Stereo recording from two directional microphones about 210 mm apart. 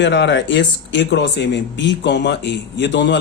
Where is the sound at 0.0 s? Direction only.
55° left (ahead or behind).